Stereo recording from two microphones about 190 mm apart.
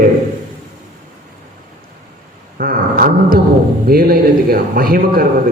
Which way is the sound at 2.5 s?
50° right (ahead or behind).